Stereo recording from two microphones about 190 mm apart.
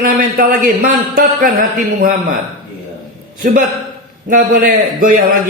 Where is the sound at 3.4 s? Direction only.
45° right (ahead or behind).